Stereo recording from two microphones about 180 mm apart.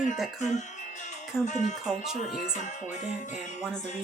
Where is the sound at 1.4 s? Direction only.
40° left (ahead or behind).